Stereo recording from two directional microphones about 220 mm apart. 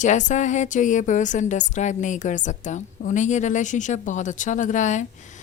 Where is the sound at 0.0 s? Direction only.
35° left (ahead or behind).